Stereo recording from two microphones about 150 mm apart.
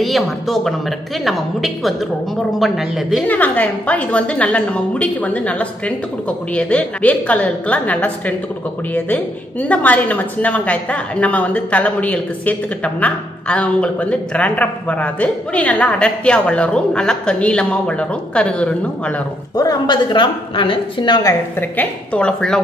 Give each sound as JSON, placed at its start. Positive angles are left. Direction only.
{"t": 0.0, "sound": "a woman's voice", "side_deg": 0}
{"t": 3.3, "sound": "a woman's voice", "side_deg": 10}
{"t": 19.5, "sound": "a woman's voice", "side_deg": 25}
{"t": 21.5, "sound": "a woman's voice", "side_deg": 10}